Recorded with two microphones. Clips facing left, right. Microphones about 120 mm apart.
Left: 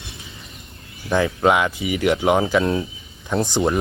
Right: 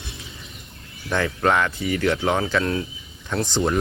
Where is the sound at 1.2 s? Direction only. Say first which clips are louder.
Left 2 dB; 10° left (ahead or behind).